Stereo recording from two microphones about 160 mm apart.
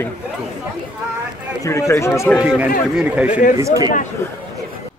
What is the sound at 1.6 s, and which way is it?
Speech, 20° left (ahead or behind).